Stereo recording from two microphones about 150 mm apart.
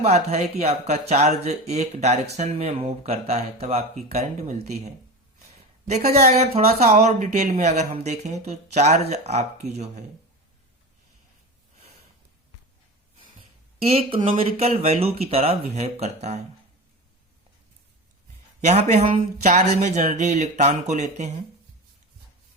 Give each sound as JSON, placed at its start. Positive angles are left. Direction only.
{"t": 0.0, "sound": "speech", "side_deg": -45}
{"t": 6.1, "sound": "speech", "side_deg": -45}
{"t": 13.7, "sound": "speech", "side_deg": -40}
{"t": 18.6, "sound": "speech", "side_deg": -50}